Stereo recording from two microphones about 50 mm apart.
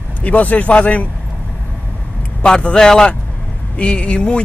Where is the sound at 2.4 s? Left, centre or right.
Centre.